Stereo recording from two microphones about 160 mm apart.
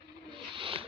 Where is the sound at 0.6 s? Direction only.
35° right (ahead or behind).